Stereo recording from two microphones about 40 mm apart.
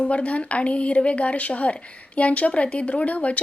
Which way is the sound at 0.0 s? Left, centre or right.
Left.